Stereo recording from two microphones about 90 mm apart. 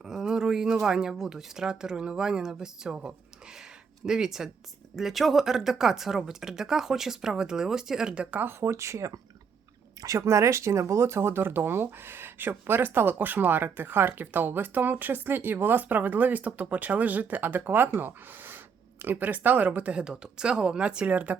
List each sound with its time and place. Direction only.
0.0 s speech: 5° right (ahead or behind)